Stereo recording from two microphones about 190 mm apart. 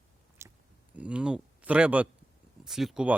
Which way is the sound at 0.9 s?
5° right (ahead or behind).